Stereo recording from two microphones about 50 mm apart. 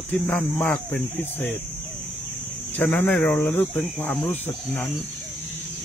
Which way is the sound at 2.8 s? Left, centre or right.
Left.